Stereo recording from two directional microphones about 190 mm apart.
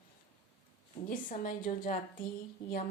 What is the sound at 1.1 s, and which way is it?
A woman's voice, 45° left (ahead or behind).